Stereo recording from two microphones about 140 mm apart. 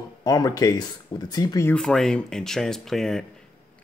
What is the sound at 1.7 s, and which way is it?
A man's voice, 5° left (ahead or behind).